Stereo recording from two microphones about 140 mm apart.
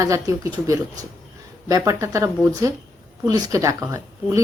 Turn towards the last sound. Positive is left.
turn(degrees=-20)  # may be behind; listen again after turning